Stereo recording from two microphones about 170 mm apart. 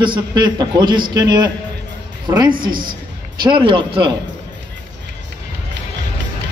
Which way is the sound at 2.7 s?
55° right (ahead or behind).